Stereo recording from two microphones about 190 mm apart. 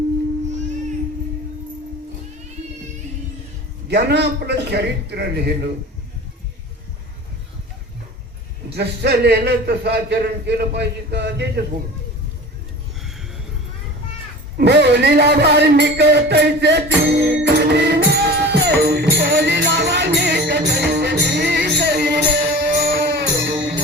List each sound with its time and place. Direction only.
3.8 s speech: 60° right (ahead or behind)
8.7 s speech: 60° right (ahead or behind)
14.6 s music: 65° right (ahead or behind)